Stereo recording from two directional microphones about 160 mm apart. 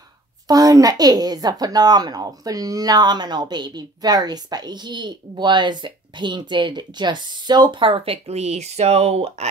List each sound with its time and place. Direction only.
0.5 s speech: 20° right (ahead or behind); by 9.5 s 40° right (ahead or behind)